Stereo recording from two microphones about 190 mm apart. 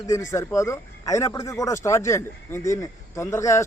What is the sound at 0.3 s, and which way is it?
Speech, 15° left (ahead or behind).